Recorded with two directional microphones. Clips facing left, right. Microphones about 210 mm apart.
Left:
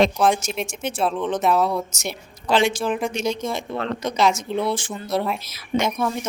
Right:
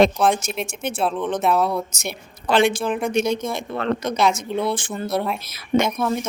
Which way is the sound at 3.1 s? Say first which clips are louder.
Right 4 dB; 55° right (ahead or behind).